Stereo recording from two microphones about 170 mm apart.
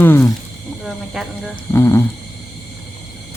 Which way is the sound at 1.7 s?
15° left (ahead or behind).